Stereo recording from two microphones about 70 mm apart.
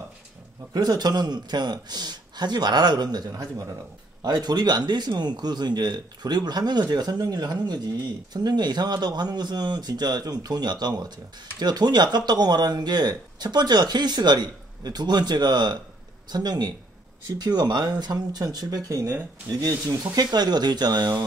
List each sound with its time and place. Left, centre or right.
0.7 s speech: right
4.2 s speech: right